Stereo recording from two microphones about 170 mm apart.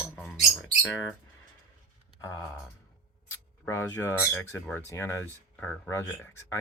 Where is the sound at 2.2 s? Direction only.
15° left (ahead or behind).